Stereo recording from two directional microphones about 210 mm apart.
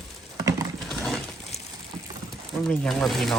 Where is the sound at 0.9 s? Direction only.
Centre (ahead or behind).